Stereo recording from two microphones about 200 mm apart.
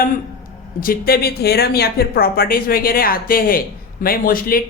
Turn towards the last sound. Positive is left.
turn(degrees=45)  # may be behind; listen again after turning